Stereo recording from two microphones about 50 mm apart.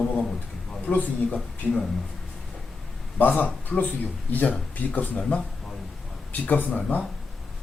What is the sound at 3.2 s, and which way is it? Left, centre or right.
Speech, left.